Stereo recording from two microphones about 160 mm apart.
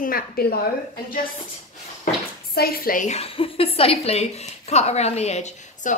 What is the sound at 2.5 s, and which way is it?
A woman's voice, 70° left (ahead or behind).